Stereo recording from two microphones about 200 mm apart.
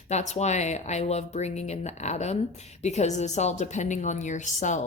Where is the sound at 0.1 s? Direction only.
35° left (ahead or behind).